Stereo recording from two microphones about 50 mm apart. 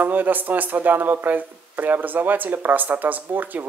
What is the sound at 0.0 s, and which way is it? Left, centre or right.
Speech, right.